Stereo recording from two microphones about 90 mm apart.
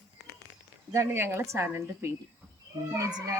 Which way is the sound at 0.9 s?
25° right (ahead or behind).